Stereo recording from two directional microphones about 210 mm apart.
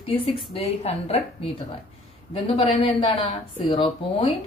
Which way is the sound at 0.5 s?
30° left (ahead or behind).